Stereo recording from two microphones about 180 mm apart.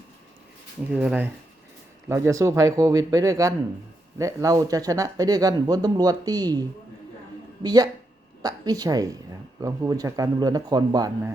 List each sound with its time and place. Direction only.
0.9 s speech: 10° right (ahead or behind)